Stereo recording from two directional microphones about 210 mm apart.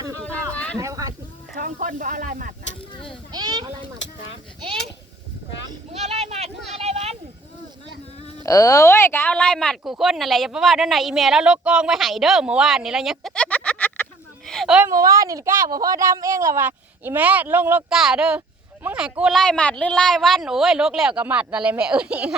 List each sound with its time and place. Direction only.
0.2 s a sound: 5° left (ahead or behind)
0.8 s speech: 15° right (ahead or behind)
1.5 s speech: 40° right (ahead or behind)
3.3 s a child's voice: 20° right (ahead or behind)
6.0 s a child's voice: 30° right (ahead or behind)
8.4 s speech: 15° left (ahead or behind); by 14.8 s centre (ahead or behind)
14.8 s speech: 15° right (ahead or behind)